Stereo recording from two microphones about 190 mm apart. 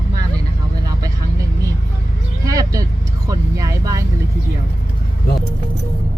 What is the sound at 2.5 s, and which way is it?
Vehicle, 20° right (ahead or behind).